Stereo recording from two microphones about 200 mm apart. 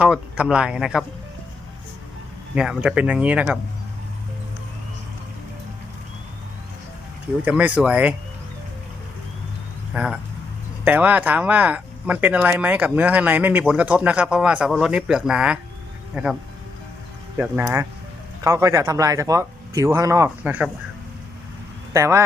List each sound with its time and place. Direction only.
0.0 s speech: 5° right (ahead or behind)
2.6 s speech: 5° right (ahead or behind)
7.4 s speech: 5° right (ahead or behind)
9.9 s speech: 5° right (ahead or behind)
21.9 s speech: 15° right (ahead or behind)